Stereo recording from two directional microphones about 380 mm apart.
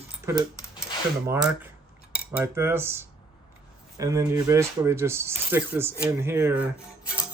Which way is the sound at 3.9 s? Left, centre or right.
Centre.